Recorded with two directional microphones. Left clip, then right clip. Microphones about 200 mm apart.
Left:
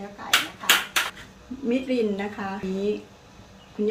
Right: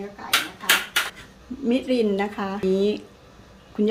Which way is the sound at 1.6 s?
40° right (ahead or behind).